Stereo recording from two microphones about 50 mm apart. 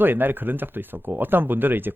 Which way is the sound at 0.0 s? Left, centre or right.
Right.